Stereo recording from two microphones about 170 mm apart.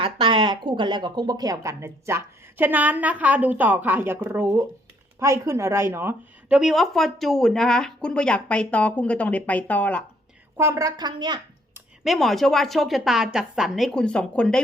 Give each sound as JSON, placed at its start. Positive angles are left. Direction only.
{"t": 0.0, "sound": "a woman's voice", "side_deg": -30}
{"t": 10.6, "sound": "a woman's voice", "side_deg": -15}
{"t": 12.0, "sound": "a woman's voice", "side_deg": 0}